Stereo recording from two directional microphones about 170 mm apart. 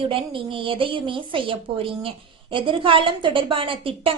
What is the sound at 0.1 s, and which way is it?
A woman's voice, 30° right (ahead or behind).